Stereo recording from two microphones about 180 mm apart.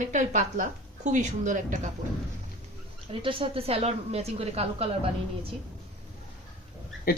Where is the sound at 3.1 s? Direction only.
30° right (ahead or behind).